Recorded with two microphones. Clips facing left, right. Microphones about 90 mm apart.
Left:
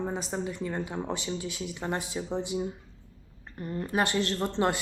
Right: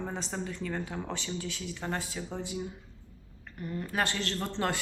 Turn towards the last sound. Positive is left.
turn(degrees=15)  # may be behind; listen again after turning